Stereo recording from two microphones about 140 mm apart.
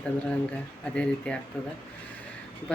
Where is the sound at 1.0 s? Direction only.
5° left (ahead or behind).